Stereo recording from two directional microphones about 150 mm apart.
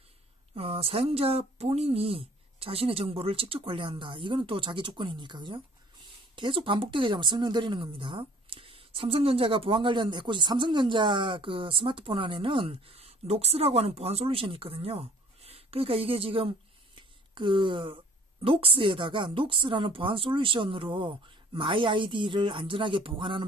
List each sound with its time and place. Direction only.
0.6 s speech: 40° right (ahead or behind)